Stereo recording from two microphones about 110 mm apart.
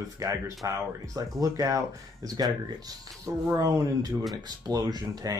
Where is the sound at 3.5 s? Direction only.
35° right (ahead or behind).